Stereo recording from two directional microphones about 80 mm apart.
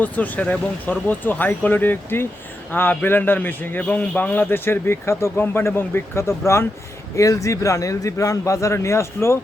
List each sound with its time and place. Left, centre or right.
0.0 s a man's voice: left